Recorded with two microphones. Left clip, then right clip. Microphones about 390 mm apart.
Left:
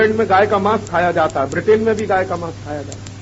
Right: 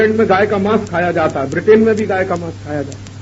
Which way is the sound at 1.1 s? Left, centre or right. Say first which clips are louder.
Right 1 dB; right.